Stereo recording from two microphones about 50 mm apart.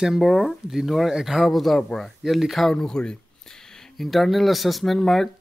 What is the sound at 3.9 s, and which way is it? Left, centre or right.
Speech, centre.